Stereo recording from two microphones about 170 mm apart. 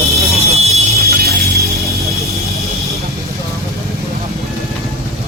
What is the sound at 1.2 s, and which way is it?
Music, 65° right (ahead or behind).